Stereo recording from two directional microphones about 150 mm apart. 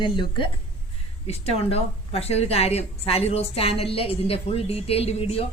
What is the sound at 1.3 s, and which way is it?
A woman's voice, 40° left (ahead or behind).